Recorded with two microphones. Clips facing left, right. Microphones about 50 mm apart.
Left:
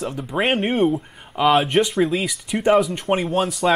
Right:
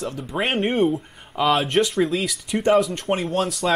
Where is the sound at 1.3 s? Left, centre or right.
Centre.